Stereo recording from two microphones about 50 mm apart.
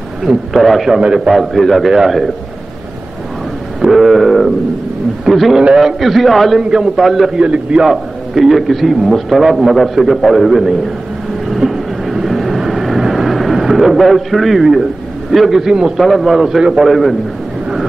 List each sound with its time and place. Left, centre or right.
0.5 s a man's voice: centre
1.0 s a man's voice: centre
1.3 s a man's voice: centre
3.9 s a man's voice: centre
6.6 s a man's voice: centre
7.0 s a man's voice: centre
7.3 s a man's voice: centre
7.8 s a man's voice: centre
11.4 s vehicle: centre
15.3 s a man's voice: centre